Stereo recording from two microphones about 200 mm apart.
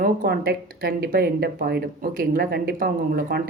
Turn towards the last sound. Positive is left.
turn(degrees=-50)  # may be behind; listen again after turning